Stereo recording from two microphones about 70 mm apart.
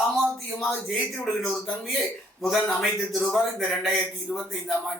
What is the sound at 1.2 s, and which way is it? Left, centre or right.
A man's voice, centre.